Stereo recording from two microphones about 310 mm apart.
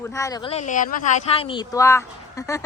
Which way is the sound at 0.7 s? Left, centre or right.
Left.